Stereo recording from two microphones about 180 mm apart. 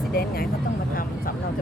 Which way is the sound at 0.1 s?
55° left (ahead or behind).